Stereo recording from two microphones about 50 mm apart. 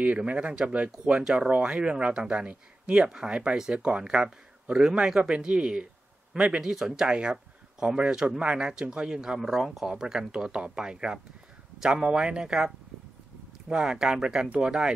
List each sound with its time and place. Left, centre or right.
0.2 s speech: right